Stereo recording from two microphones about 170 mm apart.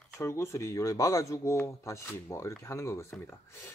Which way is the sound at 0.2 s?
15° left (ahead or behind).